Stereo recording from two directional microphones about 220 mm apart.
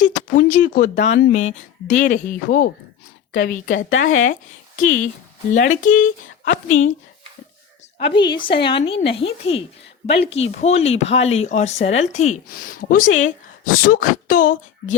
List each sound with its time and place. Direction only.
0.0 s speech: 35° left (ahead or behind)
5.5 s speech: 35° left (ahead or behind)
7.9 s a woman's voice: 25° left (ahead or behind)
13.1 s speech: 65° left (ahead or behind)
13.7 s speech: 40° left (ahead or behind)